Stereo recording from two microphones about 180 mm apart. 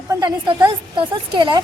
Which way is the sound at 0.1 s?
25° right (ahead or behind).